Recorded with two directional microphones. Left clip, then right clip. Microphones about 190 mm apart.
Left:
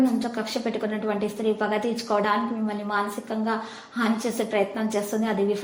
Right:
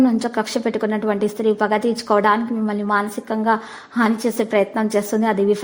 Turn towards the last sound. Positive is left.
turn(degrees=-35)  # may be behind; listen again after turning